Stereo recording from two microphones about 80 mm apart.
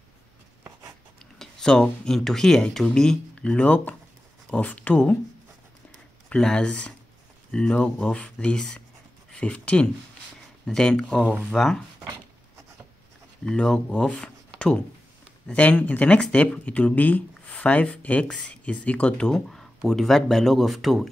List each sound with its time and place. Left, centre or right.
1.4 s speech: centre
6.2 s speech: centre
13.5 s speech: centre